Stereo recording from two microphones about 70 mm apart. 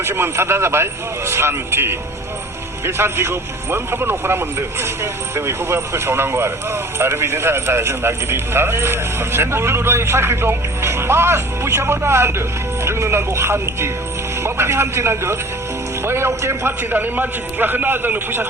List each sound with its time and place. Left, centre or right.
0.0 s speech: right
16.9 s a man's voice: right